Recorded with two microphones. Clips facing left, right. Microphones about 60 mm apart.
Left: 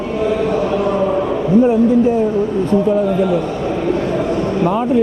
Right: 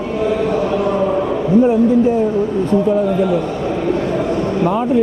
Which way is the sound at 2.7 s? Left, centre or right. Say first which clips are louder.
Even; left.